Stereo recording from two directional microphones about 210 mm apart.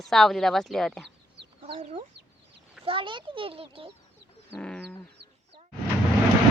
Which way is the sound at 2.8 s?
25° right (ahead or behind).